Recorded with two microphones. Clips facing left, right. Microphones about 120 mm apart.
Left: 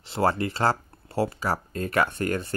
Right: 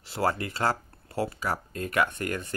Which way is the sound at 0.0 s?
25° left (ahead or behind).